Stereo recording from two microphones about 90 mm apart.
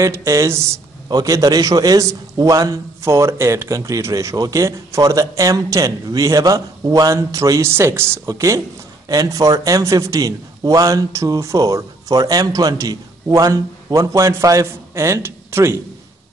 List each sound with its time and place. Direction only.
0.0 s a man's voice: 30° right (ahead or behind)